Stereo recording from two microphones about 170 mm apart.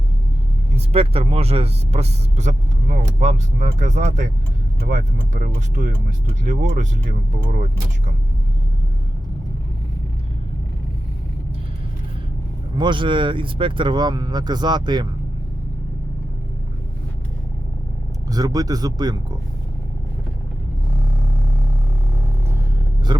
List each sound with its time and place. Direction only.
0.9 s speech: 35° right (ahead or behind)
5.3 s speech: 50° right (ahead or behind)
12.7 s speech: 25° right (ahead or behind)
18.3 s speech: 20° right (ahead or behind)